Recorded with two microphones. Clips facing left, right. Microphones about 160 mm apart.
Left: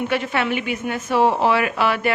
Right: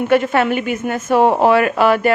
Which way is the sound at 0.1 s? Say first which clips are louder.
Right 7 dB; 45° right (ahead or behind).